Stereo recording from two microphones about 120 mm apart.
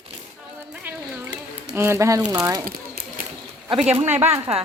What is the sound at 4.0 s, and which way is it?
Speech, 20° right (ahead or behind).